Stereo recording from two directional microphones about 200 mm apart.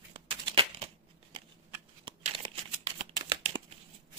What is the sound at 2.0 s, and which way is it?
Crumpling, 25° right (ahead or behind).